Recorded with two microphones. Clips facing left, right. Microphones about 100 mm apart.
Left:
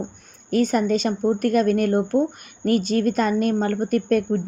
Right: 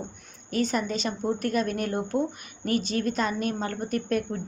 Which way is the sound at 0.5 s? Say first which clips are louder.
Left 7 dB; 45° left (ahead or behind).